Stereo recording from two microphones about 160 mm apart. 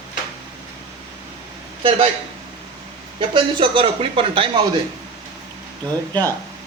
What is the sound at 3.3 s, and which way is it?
Speech, 30° right (ahead or behind).